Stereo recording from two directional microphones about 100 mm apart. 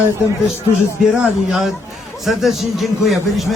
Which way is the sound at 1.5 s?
5° right (ahead or behind).